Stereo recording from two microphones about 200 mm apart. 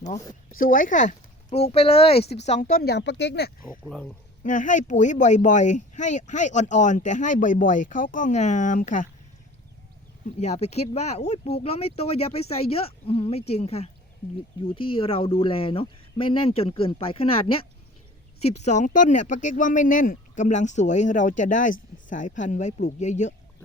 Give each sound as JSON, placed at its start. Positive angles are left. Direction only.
{"t": 0.6, "sound": "speech", "side_deg": 45}
{"t": 3.8, "sound": "speech", "side_deg": 0}
{"t": 4.4, "sound": "speech", "side_deg": 40}
{"t": 10.4, "sound": "speech", "side_deg": 35}